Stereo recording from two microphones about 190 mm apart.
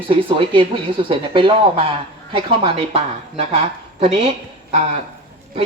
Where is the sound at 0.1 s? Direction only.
30° right (ahead or behind).